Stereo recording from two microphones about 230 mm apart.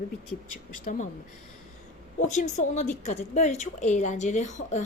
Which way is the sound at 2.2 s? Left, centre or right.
Left.